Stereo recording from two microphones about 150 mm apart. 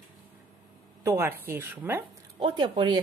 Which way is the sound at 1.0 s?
15° right (ahead or behind).